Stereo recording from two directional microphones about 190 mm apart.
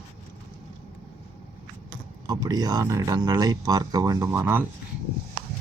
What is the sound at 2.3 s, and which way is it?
Speech, 20° right (ahead or behind).